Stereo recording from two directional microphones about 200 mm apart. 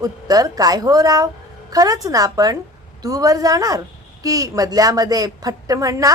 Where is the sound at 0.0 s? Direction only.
15° right (ahead or behind).